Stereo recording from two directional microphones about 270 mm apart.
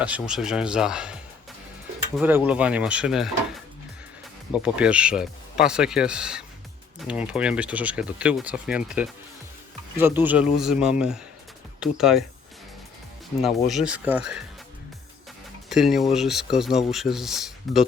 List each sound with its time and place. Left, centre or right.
0.0 s speech: centre
4.5 s speech: centre
13.4 s speech: centre
15.7 s speech: centre